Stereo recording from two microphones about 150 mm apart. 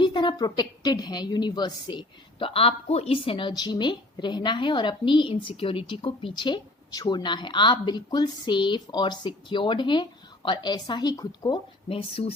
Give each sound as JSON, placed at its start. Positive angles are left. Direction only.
{"t": 0.0, "sound": "a woman's voice", "side_deg": 30}